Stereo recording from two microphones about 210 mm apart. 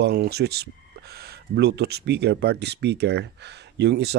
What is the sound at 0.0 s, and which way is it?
Speech, 50° right (ahead or behind).